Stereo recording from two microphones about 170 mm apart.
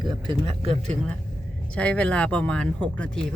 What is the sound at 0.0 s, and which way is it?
Speech, 30° right (ahead or behind).